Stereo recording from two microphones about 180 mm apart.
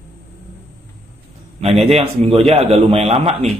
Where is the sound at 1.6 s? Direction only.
35° right (ahead or behind).